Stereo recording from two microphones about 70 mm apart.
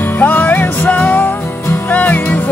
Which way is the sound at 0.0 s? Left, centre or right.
Left.